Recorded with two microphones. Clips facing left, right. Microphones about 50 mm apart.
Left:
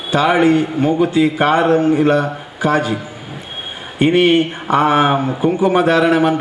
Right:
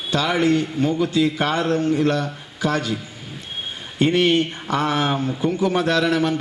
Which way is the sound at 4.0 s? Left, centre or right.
Left.